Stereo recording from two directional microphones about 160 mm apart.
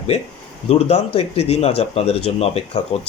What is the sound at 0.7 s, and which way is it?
Speech, 40° left (ahead or behind).